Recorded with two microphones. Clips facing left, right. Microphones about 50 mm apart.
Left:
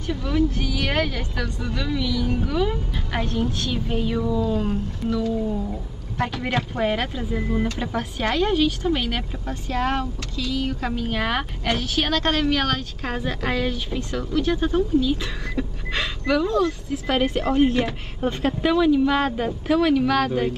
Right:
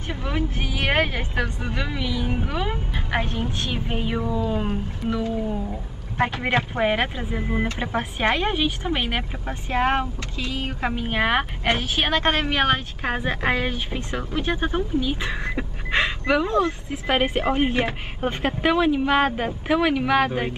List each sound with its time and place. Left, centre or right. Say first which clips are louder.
0.1 s speech: left 5 dB; right